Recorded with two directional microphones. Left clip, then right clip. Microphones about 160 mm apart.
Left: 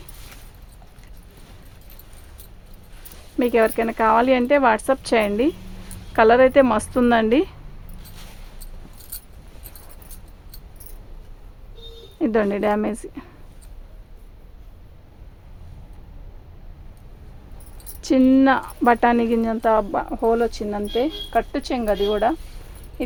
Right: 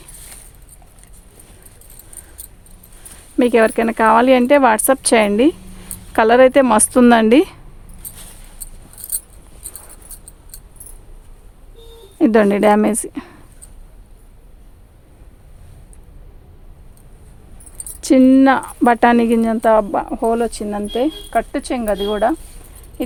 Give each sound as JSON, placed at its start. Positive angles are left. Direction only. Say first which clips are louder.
{"t": 3.3, "sound": "speech", "louder": "right 5 dB", "side_deg": -85}
{"t": 12.2, "sound": "speech", "louder": "right 8 dB", "side_deg": -90}
{"t": 18.0, "sound": "speech", "louder": "right 5 dB", "side_deg": -60}
{"t": 23.0, "sound": "patter", "louder": "right 4 dB", "side_deg": -60}